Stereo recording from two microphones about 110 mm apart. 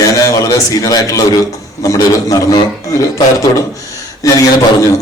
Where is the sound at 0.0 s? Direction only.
30° left (ahead or behind).